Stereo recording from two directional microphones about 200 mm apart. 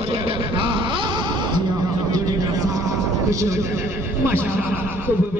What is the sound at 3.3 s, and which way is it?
Speech, 15° right (ahead or behind).